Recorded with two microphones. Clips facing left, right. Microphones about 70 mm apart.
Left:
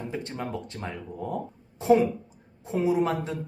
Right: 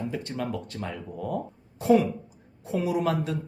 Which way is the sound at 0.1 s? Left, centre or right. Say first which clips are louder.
Right 1 dB; left.